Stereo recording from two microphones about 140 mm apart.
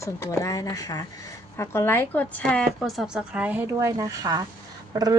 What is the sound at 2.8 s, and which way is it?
Speech, 5° right (ahead or behind).